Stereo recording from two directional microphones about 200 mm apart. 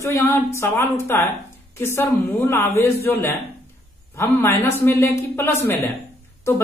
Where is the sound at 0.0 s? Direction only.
15° left (ahead or behind).